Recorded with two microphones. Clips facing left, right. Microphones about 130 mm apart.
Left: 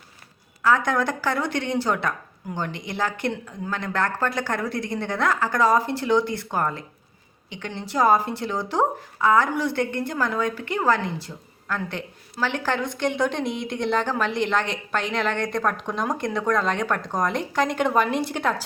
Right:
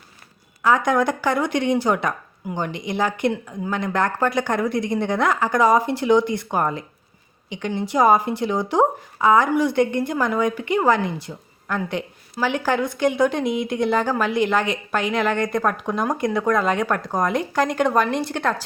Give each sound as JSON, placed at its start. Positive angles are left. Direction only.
{"t": 0.6, "sound": "a woman's voice", "side_deg": -15}